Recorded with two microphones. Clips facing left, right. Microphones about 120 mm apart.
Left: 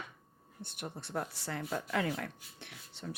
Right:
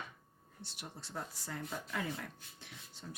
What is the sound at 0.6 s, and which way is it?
Speech, 55° left (ahead or behind).